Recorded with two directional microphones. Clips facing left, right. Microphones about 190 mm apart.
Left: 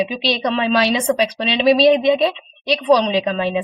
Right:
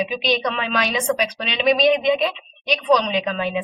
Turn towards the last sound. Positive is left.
turn(degrees=30)  # may be behind; listen again after turning